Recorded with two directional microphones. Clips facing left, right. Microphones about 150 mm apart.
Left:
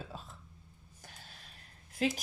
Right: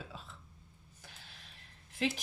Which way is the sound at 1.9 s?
40° left (ahead or behind).